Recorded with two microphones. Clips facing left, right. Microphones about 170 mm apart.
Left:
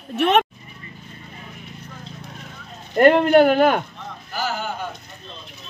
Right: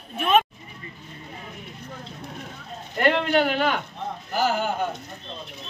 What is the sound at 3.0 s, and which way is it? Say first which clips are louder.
Speech: left 8 dB; 45° left (ahead or behind).